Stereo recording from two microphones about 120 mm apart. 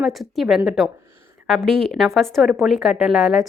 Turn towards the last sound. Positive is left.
turn(degrees=-5)  # may be behind; listen again after turning